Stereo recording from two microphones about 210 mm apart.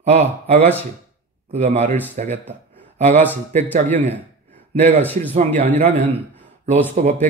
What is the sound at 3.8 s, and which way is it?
Speech, 10° left (ahead or behind).